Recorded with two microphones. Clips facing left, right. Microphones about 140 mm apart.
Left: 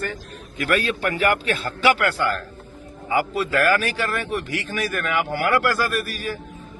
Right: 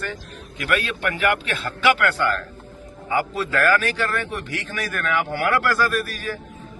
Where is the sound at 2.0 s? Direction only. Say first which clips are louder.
Right 1 dB; 10° left (ahead or behind).